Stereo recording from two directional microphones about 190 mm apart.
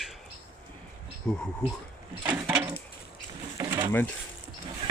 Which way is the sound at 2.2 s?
10° right (ahead or behind).